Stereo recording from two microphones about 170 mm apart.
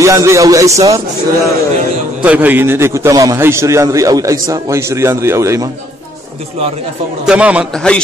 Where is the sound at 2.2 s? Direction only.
10° right (ahead or behind).